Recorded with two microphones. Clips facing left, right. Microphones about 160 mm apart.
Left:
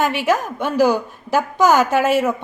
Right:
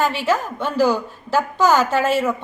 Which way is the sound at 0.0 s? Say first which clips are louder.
Left 1 dB; 15° left (ahead or behind).